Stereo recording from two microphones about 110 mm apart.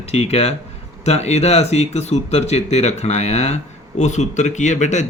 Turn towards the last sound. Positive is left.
turn(degrees=90)